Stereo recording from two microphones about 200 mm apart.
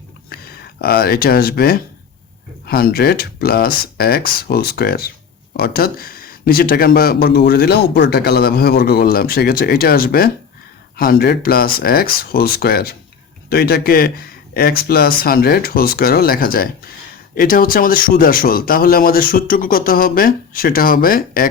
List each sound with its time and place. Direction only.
0.3 s speech: 50° left (ahead or behind)